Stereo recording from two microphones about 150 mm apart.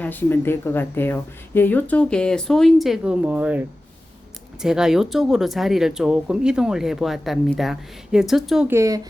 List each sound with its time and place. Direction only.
0.0 s speech: 10° left (ahead or behind)
8.6 s speech: 20° right (ahead or behind)